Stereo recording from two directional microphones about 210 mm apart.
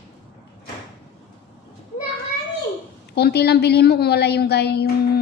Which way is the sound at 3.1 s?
50° left (ahead or behind).